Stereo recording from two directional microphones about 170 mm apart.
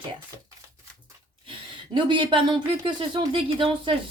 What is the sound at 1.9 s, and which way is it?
Speech, 30° right (ahead or behind).